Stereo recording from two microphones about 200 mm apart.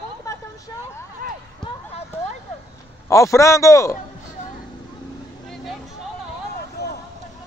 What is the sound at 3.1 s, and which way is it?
Speech, 15° left (ahead or behind).